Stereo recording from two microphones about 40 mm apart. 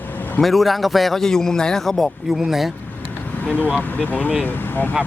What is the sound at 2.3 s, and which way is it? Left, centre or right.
Speech, centre.